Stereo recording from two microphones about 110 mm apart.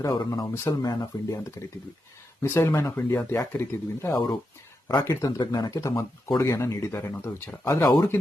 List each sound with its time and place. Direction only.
0.0 s speech: 35° left (ahead or behind)
2.4 s speech: 25° left (ahead or behind)
4.9 s speech: 35° left (ahead or behind)